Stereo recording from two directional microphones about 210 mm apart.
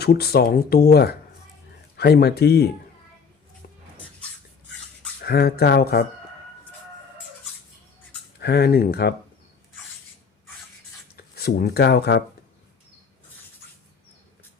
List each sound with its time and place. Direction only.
0.0 s speech: 50° left (ahead or behind)
5.2 s speech: 50° left (ahead or behind)
8.4 s speech: 50° left (ahead or behind)
11.2 s speech: 45° left (ahead or behind)